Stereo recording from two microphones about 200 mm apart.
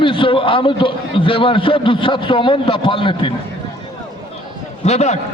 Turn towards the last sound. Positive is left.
turn(degrees=35)  # may be behind; listen again after turning